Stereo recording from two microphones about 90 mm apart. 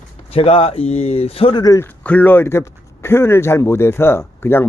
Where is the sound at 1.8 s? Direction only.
20° left (ahead or behind).